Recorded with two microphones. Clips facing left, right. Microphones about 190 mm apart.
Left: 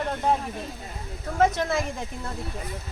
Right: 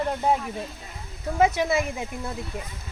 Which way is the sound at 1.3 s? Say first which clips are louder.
Right 1 dB; 10° right (ahead or behind).